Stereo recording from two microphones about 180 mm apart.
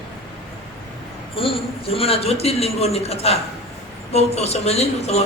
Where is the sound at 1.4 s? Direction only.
30° left (ahead or behind).